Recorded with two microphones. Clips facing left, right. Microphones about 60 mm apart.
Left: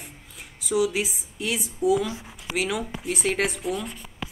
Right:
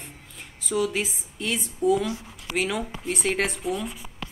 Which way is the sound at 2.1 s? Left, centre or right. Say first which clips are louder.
Right 1 dB; left.